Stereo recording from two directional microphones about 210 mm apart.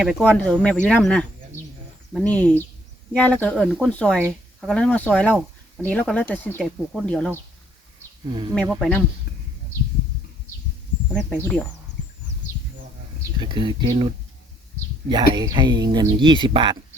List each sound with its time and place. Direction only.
0.0 s speech: 5° left (ahead or behind)
8.3 s speech: 20° right (ahead or behind)
8.5 s speech: 5° left (ahead or behind)
11.1 s speech: 5° left (ahead or behind)
13.4 s speech: 20° right (ahead or behind)
15.1 s speech: 20° right (ahead or behind)